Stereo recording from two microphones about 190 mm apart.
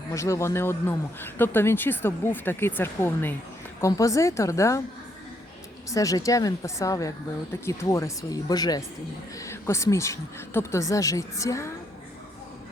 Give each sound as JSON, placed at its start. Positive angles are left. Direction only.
{"t": 0.1, "sound": "speech", "side_deg": 15}
{"t": 5.9, "sound": "speech", "side_deg": 15}